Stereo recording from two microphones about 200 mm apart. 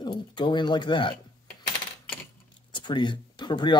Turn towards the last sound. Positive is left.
turn(degrees=20)  # may be behind; listen again after turning